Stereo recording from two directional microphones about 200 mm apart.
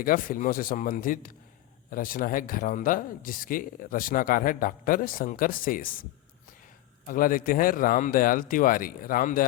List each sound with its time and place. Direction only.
0.0 s speech: 45° left (ahead or behind)
7.1 s speech: 45° left (ahead or behind)